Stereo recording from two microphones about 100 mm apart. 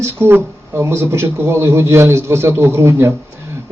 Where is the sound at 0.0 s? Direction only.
25° right (ahead or behind).